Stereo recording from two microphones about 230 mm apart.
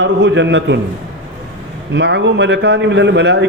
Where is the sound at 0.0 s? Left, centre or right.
Right.